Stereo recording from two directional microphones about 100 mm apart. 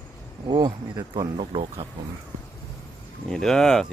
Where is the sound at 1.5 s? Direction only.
75° right (ahead or behind).